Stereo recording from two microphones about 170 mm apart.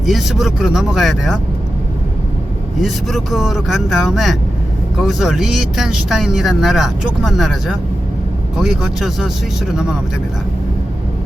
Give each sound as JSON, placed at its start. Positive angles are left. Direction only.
{"t": 0.0, "sound": "speech", "side_deg": 0}
{"t": 2.8, "sound": "speech", "side_deg": 0}